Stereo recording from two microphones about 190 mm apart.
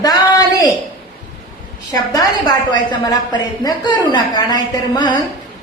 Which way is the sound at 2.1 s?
20° left (ahead or behind).